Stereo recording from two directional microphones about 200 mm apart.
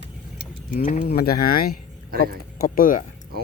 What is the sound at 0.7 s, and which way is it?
Speech, 45° left (ahead or behind).